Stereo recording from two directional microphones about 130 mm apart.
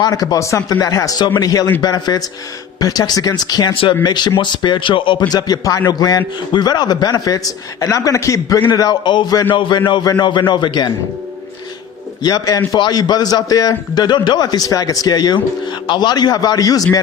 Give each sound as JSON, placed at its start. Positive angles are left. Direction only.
{"t": 0.0, "sound": "a man's voice", "side_deg": 30}
{"t": 5.3, "sound": "a man's voice", "side_deg": 30}
{"t": 12.2, "sound": "a man's voice", "side_deg": 30}